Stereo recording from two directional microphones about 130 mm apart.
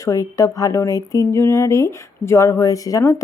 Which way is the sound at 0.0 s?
25° left (ahead or behind).